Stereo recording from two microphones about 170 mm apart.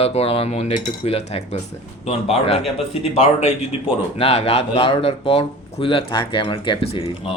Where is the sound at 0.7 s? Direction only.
25° left (ahead or behind).